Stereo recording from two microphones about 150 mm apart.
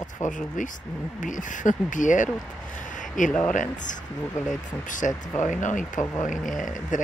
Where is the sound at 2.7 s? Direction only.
60° left (ahead or behind).